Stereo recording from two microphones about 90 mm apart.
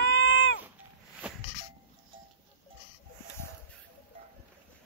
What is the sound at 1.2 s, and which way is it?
Music, 15° right (ahead or behind).